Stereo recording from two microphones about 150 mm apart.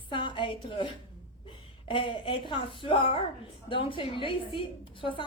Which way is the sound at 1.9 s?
35° left (ahead or behind).